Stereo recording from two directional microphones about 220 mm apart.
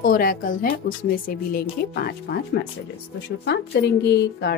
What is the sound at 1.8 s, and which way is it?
Speech, 45° left (ahead or behind).